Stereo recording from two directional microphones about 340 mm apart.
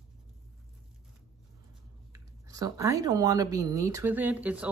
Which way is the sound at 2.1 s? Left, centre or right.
Centre.